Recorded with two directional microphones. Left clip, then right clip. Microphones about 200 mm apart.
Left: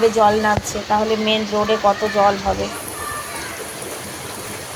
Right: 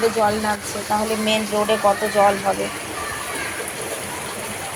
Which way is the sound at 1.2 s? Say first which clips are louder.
Left 1 dB; 15° left (ahead or behind).